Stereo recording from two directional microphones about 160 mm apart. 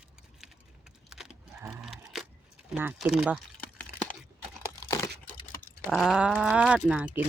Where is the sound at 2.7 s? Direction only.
5° right (ahead or behind).